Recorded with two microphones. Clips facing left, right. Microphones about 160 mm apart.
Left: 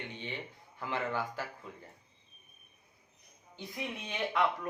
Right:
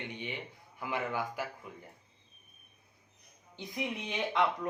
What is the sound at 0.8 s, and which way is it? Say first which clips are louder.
Speech: even; 10° right (ahead or behind).